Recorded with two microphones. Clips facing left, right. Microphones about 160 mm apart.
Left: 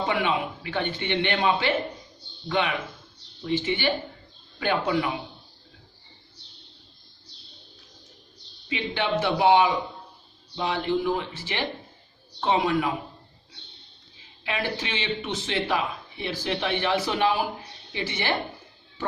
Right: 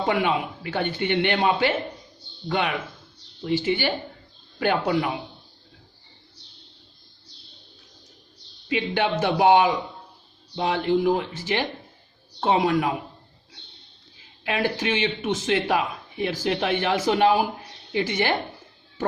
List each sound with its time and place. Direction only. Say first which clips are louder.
0.0 s speech: right 2 dB; 50° right (ahead or behind)
3.4 s speech: right 2 dB; 45° right (ahead or behind)
8.7 s speech: right 3 dB; 45° right (ahead or behind)
14.4 s speech: right 5 dB; 45° right (ahead or behind)